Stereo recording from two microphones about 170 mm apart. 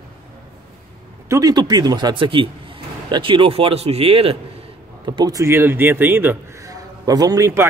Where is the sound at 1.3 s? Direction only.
25° right (ahead or behind).